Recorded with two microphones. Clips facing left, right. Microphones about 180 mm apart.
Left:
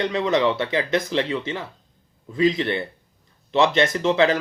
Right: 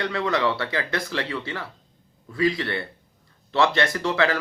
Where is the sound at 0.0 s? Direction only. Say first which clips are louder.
Left 4 dB; 20° left (ahead or behind).